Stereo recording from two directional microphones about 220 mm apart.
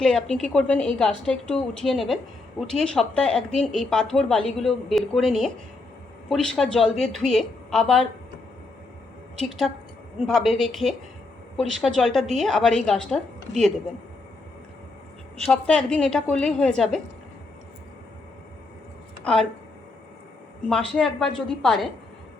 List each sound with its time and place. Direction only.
0.0 s speech: 5° left (ahead or behind)
9.4 s speech: centre (ahead or behind)
15.6 s speech: 5° left (ahead or behind)
19.2 s a woman's voice: 5° left (ahead or behind)
20.7 s speech: 5° left (ahead or behind)